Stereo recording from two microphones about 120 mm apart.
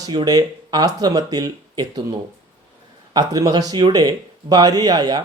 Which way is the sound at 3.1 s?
30° right (ahead or behind).